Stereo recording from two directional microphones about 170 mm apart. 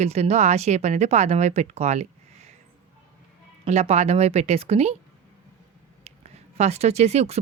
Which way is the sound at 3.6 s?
40° right (ahead or behind).